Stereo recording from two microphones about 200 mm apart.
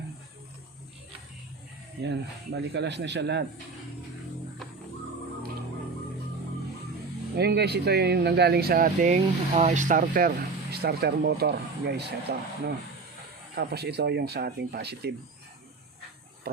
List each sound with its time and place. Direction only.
2.0 s speech: 55° right (ahead or behind)
7.3 s speech: 55° right (ahead or behind)
13.6 s speech: 55° right (ahead or behind)